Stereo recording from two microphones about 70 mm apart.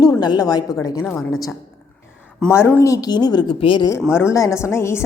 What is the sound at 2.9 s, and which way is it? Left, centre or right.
Speech, left.